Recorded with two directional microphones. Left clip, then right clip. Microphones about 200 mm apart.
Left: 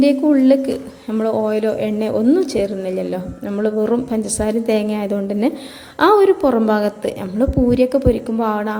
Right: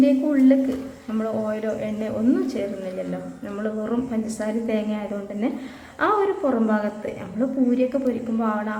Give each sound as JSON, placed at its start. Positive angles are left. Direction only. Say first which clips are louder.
{"t": 0.0, "sound": "a woman's voice", "louder": "left 5 dB", "side_deg": 40}